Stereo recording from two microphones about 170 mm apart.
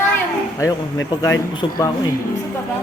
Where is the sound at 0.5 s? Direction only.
15° left (ahead or behind).